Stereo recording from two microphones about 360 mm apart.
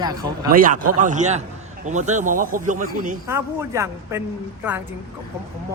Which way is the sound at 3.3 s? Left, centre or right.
Centre.